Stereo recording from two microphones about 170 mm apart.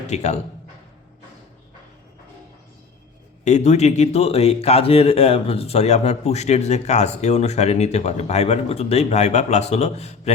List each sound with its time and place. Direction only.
0.1 s a man's voice: 40° left (ahead or behind)
3.4 s a man's voice: 40° left (ahead or behind)